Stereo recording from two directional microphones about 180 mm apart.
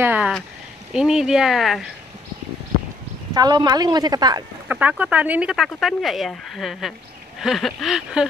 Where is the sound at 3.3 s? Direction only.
20° right (ahead or behind).